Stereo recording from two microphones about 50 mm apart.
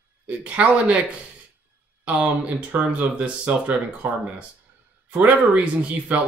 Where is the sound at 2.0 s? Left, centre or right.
Right.